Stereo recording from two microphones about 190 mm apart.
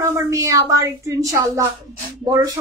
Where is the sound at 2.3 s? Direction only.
20° right (ahead or behind).